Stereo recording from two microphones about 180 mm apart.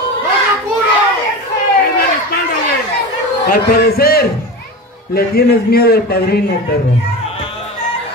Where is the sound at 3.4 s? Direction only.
55° left (ahead or behind).